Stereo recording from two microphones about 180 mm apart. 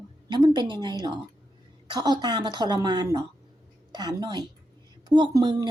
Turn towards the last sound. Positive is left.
turn(degrees=-20)  # may be behind; listen again after turning